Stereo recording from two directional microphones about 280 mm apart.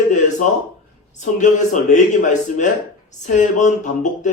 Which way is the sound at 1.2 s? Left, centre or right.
Left.